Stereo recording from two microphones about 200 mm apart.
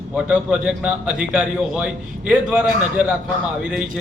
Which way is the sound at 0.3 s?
5° right (ahead or behind).